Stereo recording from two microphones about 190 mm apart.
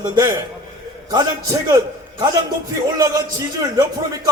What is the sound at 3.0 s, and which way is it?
Speech, 20° right (ahead or behind).